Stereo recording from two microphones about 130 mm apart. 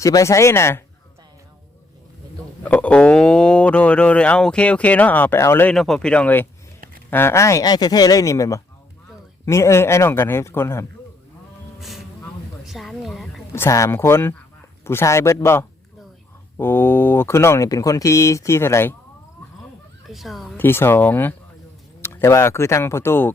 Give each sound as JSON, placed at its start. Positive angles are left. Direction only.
{"t": 0.0, "sound": "speech", "side_deg": 25}
{"t": 2.6, "sound": "speech", "side_deg": 10}
{"t": 5.7, "sound": "speech", "side_deg": 0}
{"t": 11.8, "sound": "vehicle", "side_deg": 0}
{"t": 12.6, "sound": "a sound", "side_deg": 0}
{"t": 13.5, "sound": "speech", "side_deg": 25}
{"t": 20.1, "sound": "speech", "side_deg": 0}
{"t": 20.6, "sound": "speech", "side_deg": 15}